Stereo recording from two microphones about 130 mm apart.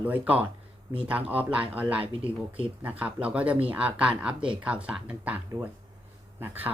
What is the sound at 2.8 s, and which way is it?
Speech, 10° right (ahead or behind).